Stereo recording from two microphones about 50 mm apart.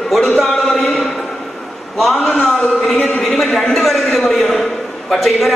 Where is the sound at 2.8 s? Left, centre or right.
Centre.